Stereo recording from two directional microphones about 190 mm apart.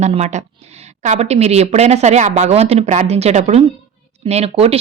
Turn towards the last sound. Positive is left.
turn(degrees=-35)  # may be behind; listen again after turning